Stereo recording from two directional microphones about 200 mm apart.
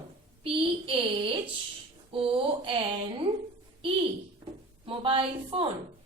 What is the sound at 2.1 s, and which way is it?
Speech, 25° right (ahead or behind).